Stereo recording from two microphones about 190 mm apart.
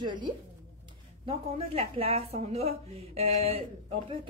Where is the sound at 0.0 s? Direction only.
25° right (ahead or behind).